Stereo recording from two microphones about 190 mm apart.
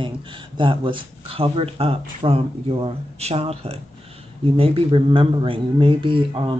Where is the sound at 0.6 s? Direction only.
25° right (ahead or behind).